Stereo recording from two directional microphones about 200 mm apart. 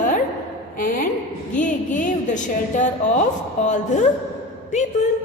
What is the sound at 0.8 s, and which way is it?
A woman's voice, 45° left (ahead or behind).